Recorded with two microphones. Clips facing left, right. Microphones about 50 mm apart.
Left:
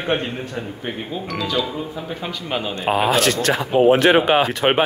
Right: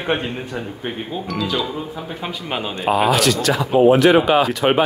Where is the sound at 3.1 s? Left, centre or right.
Left.